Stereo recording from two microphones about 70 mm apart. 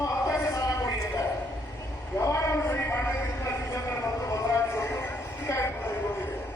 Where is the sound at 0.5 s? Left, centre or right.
Left.